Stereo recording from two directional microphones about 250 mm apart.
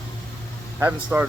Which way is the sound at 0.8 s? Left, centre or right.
Centre.